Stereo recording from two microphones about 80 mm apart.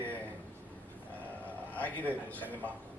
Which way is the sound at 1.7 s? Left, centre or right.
Left.